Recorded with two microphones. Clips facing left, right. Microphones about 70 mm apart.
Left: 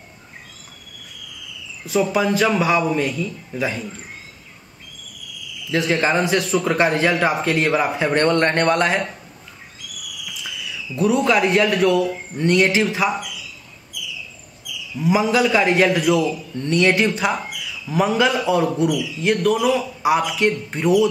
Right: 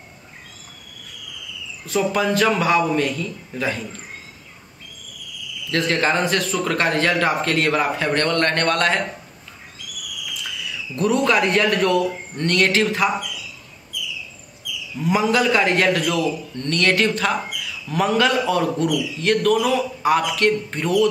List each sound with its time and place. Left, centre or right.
1.9 s speech: centre
5.7 s speech: centre
8.1 s speech: centre
10.2 s a man's voice: centre
15.0 s a man's voice: centre